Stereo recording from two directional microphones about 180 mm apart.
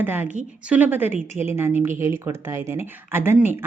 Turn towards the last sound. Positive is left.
turn(degrees=-10)  # may be behind; listen again after turning